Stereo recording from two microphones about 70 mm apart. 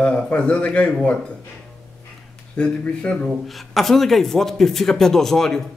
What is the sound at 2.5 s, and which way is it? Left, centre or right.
Speech, centre.